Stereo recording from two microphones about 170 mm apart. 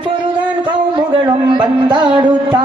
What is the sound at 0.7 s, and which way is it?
A man's voice, 25° right (ahead or behind).